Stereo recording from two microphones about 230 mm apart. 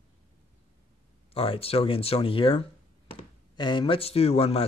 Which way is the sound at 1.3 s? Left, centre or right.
Left.